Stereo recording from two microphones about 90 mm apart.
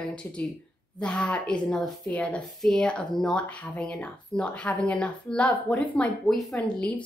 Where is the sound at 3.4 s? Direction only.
15° left (ahead or behind).